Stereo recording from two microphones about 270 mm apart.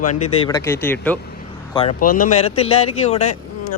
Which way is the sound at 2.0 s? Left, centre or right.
Left.